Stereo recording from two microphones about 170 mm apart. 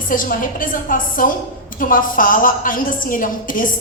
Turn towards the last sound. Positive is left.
turn(degrees=55)  # may be behind; listen again after turning